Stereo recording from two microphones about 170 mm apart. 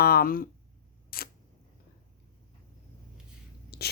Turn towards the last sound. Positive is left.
turn(degrees=70)  # may be behind; listen again after turning